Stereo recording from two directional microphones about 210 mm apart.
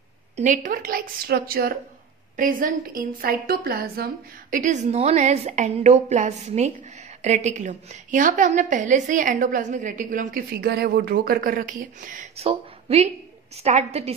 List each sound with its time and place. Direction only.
0.4 s a woman's voice: 35° right (ahead or behind)